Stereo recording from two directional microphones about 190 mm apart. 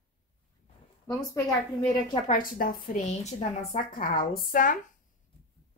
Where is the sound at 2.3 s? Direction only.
45° left (ahead or behind).